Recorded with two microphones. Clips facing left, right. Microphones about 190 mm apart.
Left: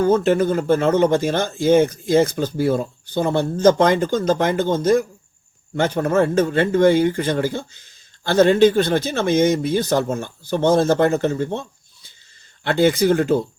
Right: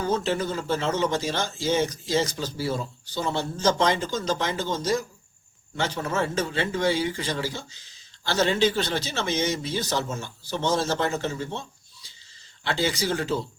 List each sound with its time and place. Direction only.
0.0 s speech: 55° left (ahead or behind)
12.6 s speech: 55° left (ahead or behind)